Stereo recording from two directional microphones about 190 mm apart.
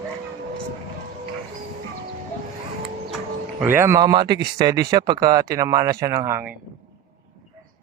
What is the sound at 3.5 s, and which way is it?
Speech, 10° right (ahead or behind).